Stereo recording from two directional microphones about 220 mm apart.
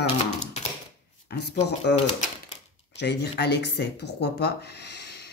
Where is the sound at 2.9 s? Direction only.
50° left (ahead or behind).